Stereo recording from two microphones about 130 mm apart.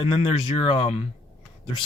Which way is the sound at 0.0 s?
45° left (ahead or behind).